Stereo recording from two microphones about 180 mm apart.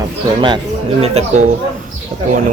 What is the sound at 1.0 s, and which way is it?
Speech, 35° right (ahead or behind).